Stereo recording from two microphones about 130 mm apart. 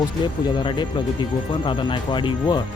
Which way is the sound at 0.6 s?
40° left (ahead or behind).